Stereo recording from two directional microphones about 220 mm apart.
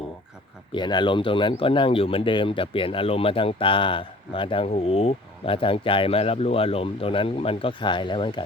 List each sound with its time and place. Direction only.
0.7 s speech: 20° left (ahead or behind)